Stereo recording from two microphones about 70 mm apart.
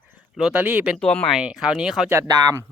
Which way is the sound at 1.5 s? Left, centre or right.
Centre.